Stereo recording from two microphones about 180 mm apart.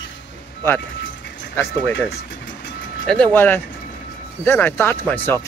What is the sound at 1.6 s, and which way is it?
Speech, 15° left (ahead or behind).